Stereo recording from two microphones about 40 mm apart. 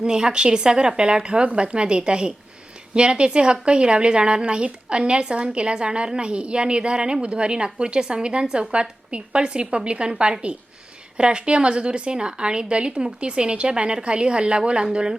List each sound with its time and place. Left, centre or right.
0.0 s a woman's voice: centre